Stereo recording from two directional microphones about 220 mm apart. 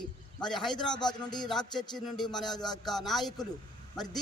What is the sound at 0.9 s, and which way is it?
Speech, 20° left (ahead or behind).